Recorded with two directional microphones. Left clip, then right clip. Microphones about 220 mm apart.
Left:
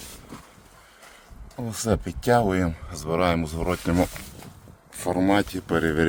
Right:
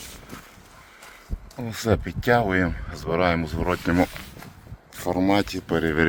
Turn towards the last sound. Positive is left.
turn(degrees=5)  # may be behind; listen again after turning